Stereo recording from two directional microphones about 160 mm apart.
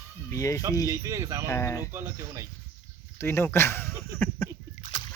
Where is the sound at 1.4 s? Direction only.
20° left (ahead or behind).